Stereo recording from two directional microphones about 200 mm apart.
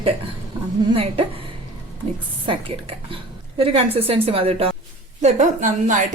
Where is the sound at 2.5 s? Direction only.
25° right (ahead or behind).